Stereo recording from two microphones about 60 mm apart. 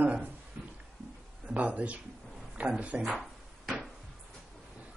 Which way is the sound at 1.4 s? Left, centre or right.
Right.